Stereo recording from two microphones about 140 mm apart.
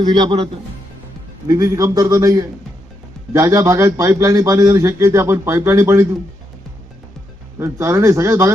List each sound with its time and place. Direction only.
0.0 s a man's voice: 30° right (ahead or behind)
1.5 s a man's voice: 25° right (ahead or behind)
7.6 s a man's voice: 20° right (ahead or behind)